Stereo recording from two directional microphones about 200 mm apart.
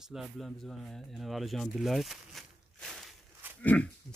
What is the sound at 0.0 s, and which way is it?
Speech, centre (ahead or behind).